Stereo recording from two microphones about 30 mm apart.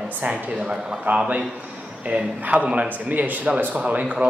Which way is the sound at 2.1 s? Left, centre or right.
Right.